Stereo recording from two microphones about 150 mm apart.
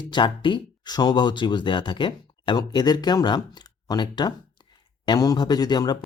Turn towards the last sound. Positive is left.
turn(degrees=30)  # may be behind; listen again after turning